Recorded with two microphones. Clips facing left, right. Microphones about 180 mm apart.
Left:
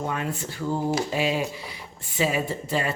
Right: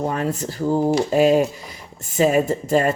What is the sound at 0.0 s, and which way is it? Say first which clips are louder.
Speech: right 6 dB; 40° right (ahead or behind).